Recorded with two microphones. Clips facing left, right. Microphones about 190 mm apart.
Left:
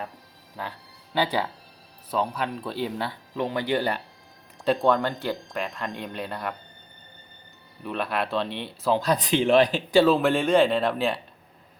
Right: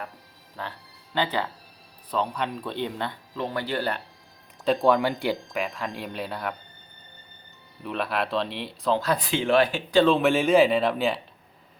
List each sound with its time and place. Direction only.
0.6 s speech: 10° left (ahead or behind)
3.3 s speech: 15° left (ahead or behind)
4.6 s speech: centre (ahead or behind)
7.9 s speech: centre (ahead or behind)
8.9 s speech: 15° left (ahead or behind)
9.9 s speech: 5° left (ahead or behind)